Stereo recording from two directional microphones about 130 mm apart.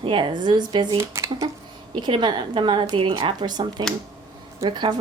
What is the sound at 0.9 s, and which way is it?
Speech, 20° right (ahead or behind).